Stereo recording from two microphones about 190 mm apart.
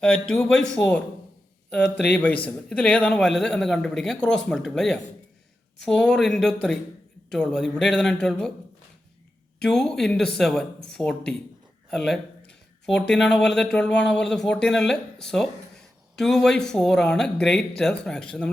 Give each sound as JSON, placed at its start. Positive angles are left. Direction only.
{"t": 0.0, "sound": "speech", "side_deg": 5}
{"t": 2.1, "sound": "a man's voice", "side_deg": 5}
{"t": 9.6, "sound": "speech", "side_deg": 5}